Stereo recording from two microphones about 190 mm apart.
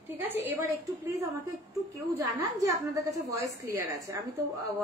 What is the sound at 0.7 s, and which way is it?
A woman's voice, 15° right (ahead or behind).